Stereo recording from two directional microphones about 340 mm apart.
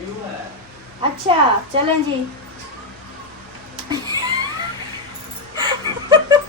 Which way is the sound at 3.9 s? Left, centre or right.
Centre.